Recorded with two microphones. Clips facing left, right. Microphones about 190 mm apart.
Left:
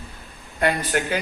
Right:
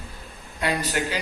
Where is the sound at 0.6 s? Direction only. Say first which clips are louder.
Left 3 dB; 55° left (ahead or behind).